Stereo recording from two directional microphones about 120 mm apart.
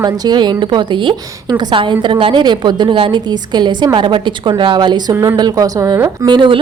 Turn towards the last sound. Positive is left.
turn(degrees=-40)  # may be behind; listen again after turning